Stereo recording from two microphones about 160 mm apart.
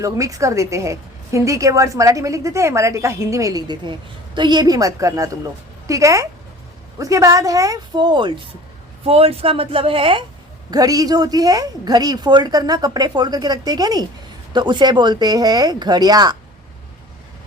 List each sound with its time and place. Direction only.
0.0 s a woman's voice: 20° right (ahead or behind)
10.7 s a woman's voice: 20° right (ahead or behind)